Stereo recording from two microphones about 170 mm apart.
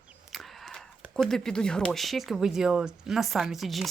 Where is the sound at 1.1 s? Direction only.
5° left (ahead or behind).